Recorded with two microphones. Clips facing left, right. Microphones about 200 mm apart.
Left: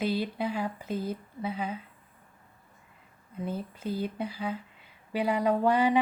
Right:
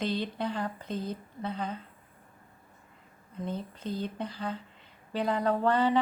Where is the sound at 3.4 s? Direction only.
10° left (ahead or behind).